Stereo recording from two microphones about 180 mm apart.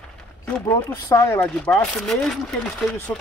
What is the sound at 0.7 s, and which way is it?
Speech, 15° left (ahead or behind).